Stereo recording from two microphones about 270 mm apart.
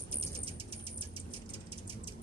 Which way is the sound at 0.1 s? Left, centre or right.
Right.